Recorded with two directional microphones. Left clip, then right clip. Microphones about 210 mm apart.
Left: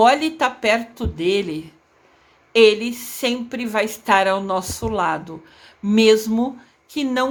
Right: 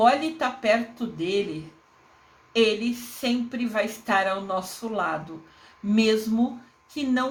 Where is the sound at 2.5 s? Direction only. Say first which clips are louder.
Left 9 dB; 40° left (ahead or behind).